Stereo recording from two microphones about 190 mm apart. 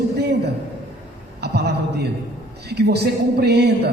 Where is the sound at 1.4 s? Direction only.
60° right (ahead or behind).